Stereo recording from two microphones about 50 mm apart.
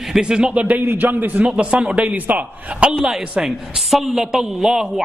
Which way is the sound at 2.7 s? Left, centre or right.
Right.